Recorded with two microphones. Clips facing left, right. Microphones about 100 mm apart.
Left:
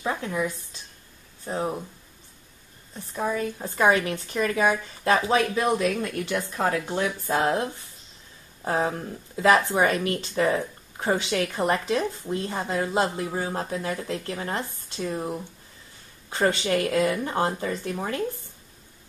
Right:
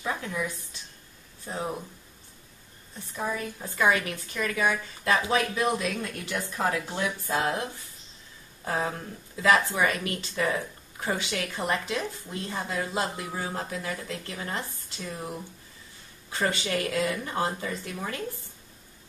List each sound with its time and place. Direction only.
0.0 s a woman's voice: 30° left (ahead or behind)
3.2 s a woman's voice: 25° left (ahead or behind)